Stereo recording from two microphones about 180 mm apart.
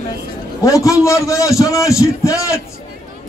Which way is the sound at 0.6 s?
15° left (ahead or behind).